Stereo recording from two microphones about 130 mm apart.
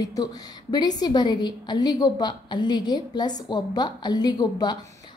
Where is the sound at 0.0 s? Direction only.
30° left (ahead or behind).